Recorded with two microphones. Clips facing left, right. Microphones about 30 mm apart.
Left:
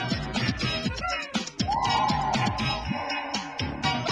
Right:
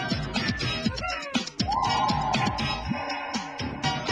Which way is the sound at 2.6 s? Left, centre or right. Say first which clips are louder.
Even; left.